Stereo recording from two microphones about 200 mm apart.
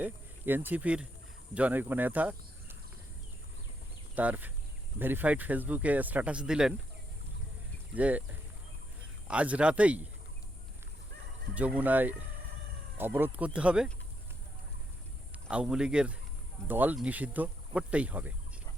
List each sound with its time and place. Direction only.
0.0 s speech: 10° right (ahead or behind)
4.1 s speech: 5° right (ahead or behind)
7.9 s speech: 5° right (ahead or behind)
9.2 s speech: 5° right (ahead or behind)
11.5 s speech: 5° right (ahead or behind)
15.4 s a man's voice: 5° right (ahead or behind)